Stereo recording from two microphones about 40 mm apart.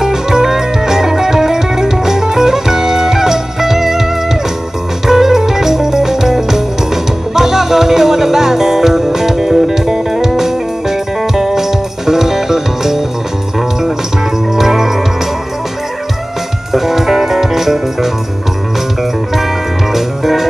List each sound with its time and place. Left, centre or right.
0.0 s music: centre
16.7 s music: centre
19.9 s music: centre